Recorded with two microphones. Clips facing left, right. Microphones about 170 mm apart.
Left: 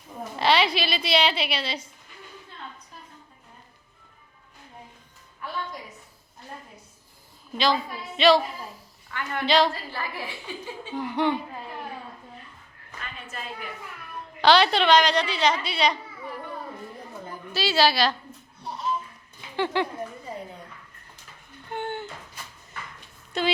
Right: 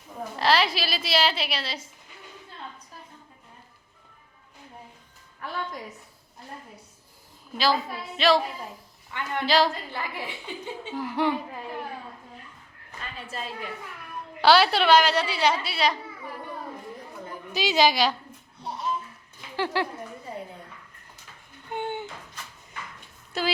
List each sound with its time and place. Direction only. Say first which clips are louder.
0.3 s a woman's voice: left 1 dB; centre (ahead or behind)
7.5 s a woman's voice: even; 5° right (ahead or behind)
9.1 s a woman's voice: even; 20° right (ahead or behind)
9.5 s a woman's voice: left 1 dB; centre (ahead or behind)
9.9 s a woman's voice: even; 20° right (ahead or behind)
10.9 s a woman's voice: left 1 dB; 5° right (ahead or behind)
14.4 s a woman's voice: even; 5° right (ahead or behind)
17.5 s a woman's voice: even; 15° right (ahead or behind)
19.5 s a woman's voice: left 2 dB; 5° right (ahead or behind)
21.7 s a sound: right 1 dB; 15° right (ahead or behind)
23.3 s a woman's voice: left 2 dB; 5° right (ahead or behind)